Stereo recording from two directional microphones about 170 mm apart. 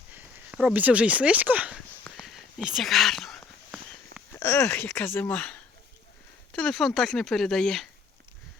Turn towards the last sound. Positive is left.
turn(degrees=0)  # may be behind; listen again after turning